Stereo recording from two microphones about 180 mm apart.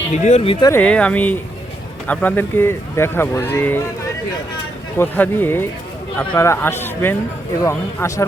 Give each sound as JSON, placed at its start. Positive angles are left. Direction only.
{"t": 0.1, "sound": "speech", "side_deg": 40}
{"t": 0.6, "sound": "speech", "side_deg": 10}
{"t": 4.9, "sound": "speech", "side_deg": 10}